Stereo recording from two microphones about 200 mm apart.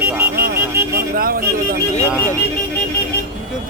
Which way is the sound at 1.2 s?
45° right (ahead or behind).